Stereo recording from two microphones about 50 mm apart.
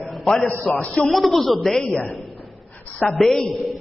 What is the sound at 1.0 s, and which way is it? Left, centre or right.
Speech, centre.